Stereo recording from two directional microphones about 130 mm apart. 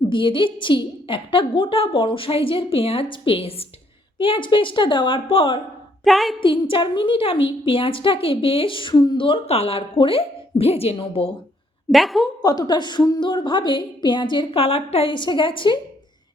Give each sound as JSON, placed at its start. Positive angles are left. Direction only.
{"t": 0.1, "sound": "a woman's voice", "side_deg": 40}
{"t": 6.1, "sound": "a woman's voice", "side_deg": 0}
{"t": 6.4, "sound": "a woman's voice", "side_deg": 40}
{"t": 11.9, "sound": "a woman's voice", "side_deg": 0}
{"t": 12.4, "sound": "a woman's voice", "side_deg": 30}